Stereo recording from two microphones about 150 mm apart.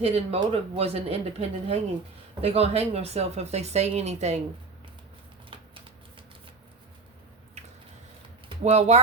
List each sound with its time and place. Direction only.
0.0 s speech: 40° right (ahead or behind)
7.6 s a sound: 50° right (ahead or behind)
8.4 s speech: 45° right (ahead or behind)